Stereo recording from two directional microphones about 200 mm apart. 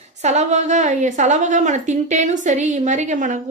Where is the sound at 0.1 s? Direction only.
35° right (ahead or behind).